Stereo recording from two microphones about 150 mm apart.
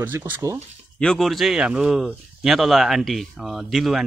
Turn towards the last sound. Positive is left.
turn(degrees=0)  # may be behind; listen again after turning